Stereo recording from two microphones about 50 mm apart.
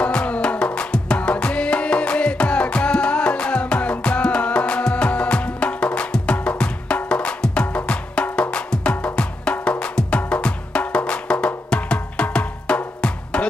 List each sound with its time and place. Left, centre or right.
0.0 s music: left